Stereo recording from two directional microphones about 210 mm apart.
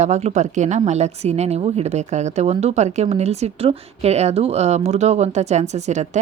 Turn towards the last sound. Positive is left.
turn(degrees=-35)  # may be behind; listen again after turning